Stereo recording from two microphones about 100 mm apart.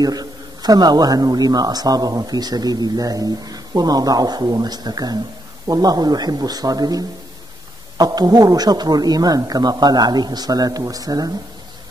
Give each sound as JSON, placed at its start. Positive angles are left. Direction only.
{"t": 0.0, "sound": "a man's voice", "side_deg": -40}